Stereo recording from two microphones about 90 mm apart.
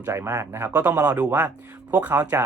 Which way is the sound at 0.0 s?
30° right (ahead or behind).